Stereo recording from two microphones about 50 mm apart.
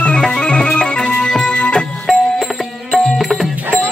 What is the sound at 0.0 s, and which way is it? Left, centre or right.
Music, centre.